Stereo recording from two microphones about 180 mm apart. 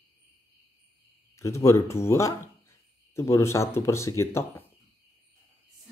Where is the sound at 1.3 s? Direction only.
15° left (ahead or behind).